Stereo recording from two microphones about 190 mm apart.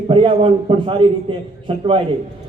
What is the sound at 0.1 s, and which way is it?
A man's voice, 30° right (ahead or behind).